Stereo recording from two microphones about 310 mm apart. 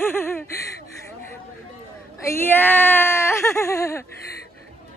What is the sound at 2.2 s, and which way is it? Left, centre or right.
Whimper, centre.